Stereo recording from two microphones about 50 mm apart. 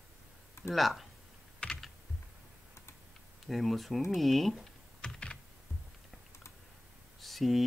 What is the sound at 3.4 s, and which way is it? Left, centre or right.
Speech, centre.